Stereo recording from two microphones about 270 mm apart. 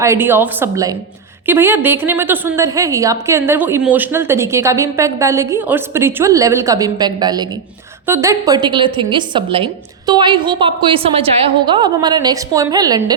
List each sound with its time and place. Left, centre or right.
0.0 s a woman's voice: centre